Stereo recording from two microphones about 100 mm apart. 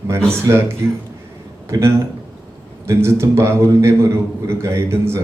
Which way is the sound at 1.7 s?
30° right (ahead or behind).